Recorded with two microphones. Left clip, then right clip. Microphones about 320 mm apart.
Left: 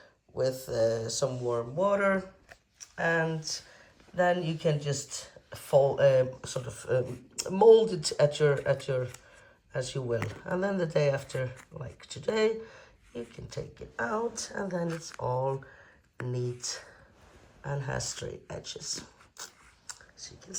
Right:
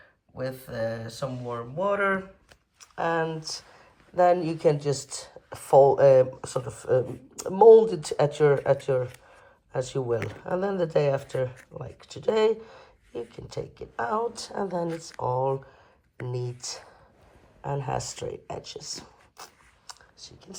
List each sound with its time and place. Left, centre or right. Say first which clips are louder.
0.4 s speech: left 3 dB; centre
3.0 s speech: right 2 dB; right
4.7 s speech: right 6 dB; centre